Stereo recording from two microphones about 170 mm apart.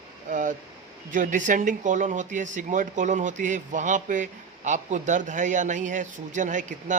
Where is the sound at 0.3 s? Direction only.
50° right (ahead or behind).